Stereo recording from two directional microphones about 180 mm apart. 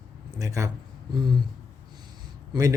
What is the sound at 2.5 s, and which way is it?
Speech, 20° right (ahead or behind).